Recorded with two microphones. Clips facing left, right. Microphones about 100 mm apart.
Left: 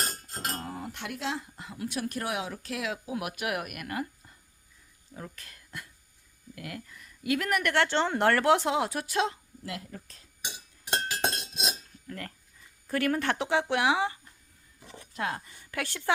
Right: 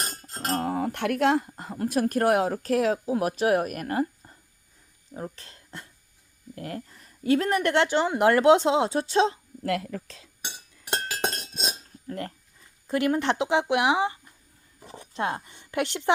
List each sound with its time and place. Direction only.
0.4 s a woman's voice: 60° right (ahead or behind); by 7.9 s 20° right (ahead or behind)
7.9 s a woman's voice: 10° right (ahead or behind); by 9.4 s 25° right (ahead or behind)
9.6 s speech: 80° right
10.4 s chink: 50° right (ahead or behind)
12.0 s a woman's voice: 30° right (ahead or behind)
14.8 s speech: 30° right (ahead or behind)